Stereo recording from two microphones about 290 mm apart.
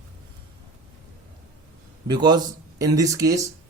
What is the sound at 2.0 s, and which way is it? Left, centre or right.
Speech, centre.